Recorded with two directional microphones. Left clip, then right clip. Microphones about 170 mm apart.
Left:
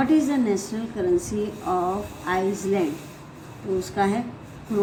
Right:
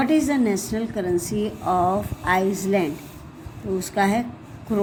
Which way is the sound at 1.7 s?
50° right (ahead or behind).